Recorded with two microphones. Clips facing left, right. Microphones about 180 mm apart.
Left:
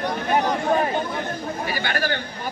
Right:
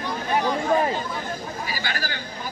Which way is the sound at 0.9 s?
55° left (ahead or behind).